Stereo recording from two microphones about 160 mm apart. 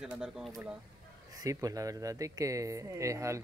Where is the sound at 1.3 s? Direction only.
20° right (ahead or behind).